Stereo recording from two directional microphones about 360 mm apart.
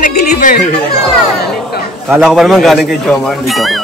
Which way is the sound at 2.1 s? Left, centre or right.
Centre.